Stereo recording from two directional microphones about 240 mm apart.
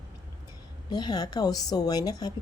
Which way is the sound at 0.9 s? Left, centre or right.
Centre.